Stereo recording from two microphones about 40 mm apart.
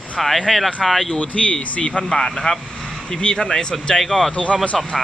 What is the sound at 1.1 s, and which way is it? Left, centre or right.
Speech, left.